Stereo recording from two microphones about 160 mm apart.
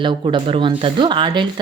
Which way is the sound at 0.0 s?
30° right (ahead or behind).